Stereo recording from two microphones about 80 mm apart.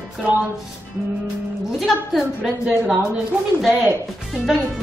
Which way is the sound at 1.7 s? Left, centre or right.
Centre.